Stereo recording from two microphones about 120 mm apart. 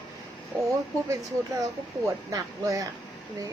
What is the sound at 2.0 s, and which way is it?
Speech, 25° right (ahead or behind).